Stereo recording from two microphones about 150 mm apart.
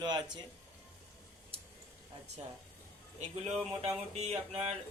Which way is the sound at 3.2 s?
45° right (ahead or behind).